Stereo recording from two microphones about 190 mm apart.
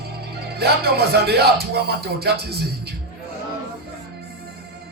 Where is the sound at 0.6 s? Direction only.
55° right (ahead or behind).